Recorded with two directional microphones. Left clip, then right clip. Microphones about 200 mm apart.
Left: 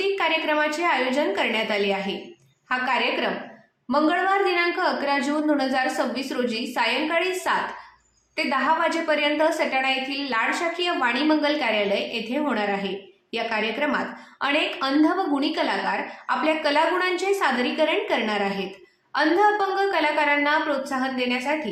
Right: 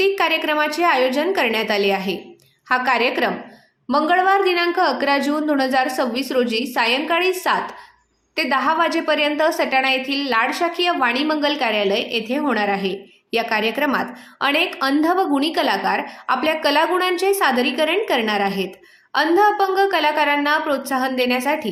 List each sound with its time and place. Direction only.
0.0 s a woman's voice: 35° right (ahead or behind)